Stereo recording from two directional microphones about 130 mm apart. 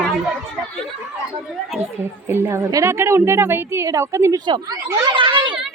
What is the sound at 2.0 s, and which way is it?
A woman's voice, 20° right (ahead or behind).